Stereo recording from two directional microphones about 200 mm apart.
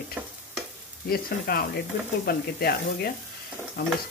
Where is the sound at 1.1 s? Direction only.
45° left (ahead or behind).